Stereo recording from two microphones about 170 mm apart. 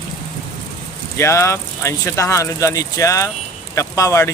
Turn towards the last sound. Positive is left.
turn(degrees=20)  # may be behind; listen again after turning